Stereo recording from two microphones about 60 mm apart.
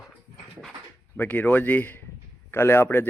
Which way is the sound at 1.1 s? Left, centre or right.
Left.